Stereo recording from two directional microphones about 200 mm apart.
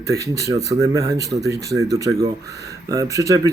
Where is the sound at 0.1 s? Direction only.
15° right (ahead or behind).